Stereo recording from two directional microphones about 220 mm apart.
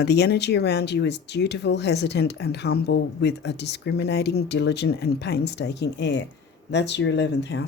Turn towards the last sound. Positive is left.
turn(degrees=50)  # may be behind; listen again after turning